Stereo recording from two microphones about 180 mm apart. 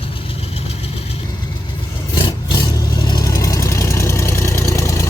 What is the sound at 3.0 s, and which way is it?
Vehicle, 25° left (ahead or behind).